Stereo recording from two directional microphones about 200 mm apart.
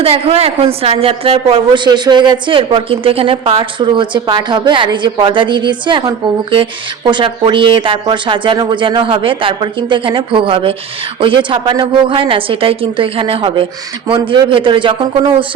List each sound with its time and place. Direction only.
0.0 s a woman's voice: 30° right (ahead or behind)